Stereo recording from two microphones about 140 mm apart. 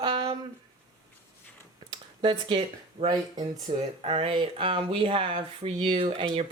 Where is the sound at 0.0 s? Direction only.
35° right (ahead or behind).